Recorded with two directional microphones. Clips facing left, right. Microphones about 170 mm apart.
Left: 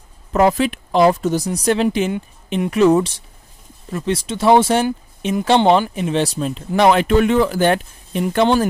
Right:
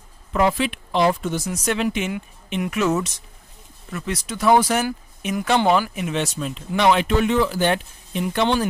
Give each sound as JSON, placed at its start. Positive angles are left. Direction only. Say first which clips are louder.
{"t": 0.3, "sound": "speech", "louder": "left 5 dB", "side_deg": 40}